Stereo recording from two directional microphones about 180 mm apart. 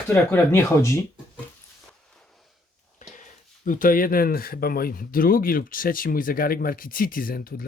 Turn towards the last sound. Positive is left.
turn(degrees=55)  # may be behind; listen again after turning